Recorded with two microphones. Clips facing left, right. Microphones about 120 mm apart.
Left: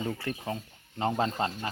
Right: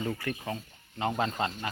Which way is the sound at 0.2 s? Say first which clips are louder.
Left 1 dB; 25° left (ahead or behind).